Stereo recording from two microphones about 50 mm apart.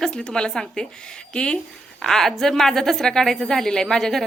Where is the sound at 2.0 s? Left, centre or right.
Centre.